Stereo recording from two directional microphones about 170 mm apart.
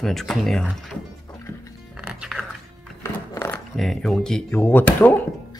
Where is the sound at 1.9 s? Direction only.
5° right (ahead or behind).